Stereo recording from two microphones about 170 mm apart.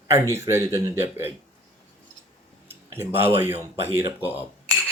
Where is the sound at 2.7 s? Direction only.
15° right (ahead or behind).